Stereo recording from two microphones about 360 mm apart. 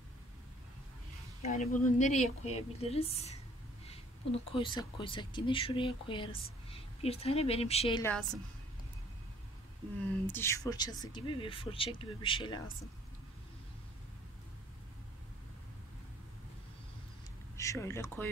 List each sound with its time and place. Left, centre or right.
1.4 s speech: centre
10.2 s speech: centre
17.6 s speech: centre